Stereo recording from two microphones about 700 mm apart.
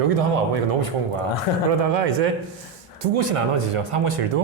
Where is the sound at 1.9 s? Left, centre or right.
Right.